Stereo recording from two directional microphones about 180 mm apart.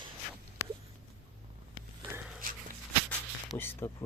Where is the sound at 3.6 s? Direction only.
10° left (ahead or behind).